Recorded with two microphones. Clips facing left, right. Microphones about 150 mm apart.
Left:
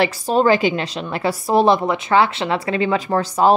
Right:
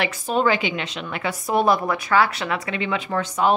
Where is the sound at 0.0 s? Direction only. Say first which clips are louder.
Left 5 dB; 35° left (ahead or behind).